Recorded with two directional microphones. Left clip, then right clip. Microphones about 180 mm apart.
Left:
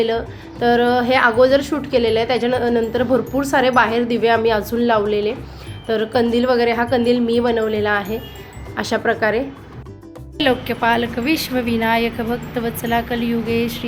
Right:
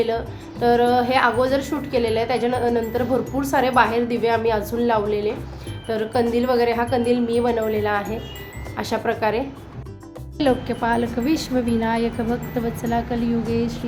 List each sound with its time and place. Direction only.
0.6 s a woman's voice: 20° left (ahead or behind)
10.3 s speech: 5° right (ahead or behind)